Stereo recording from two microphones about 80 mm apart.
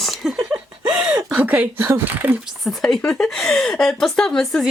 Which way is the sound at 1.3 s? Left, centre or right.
Centre.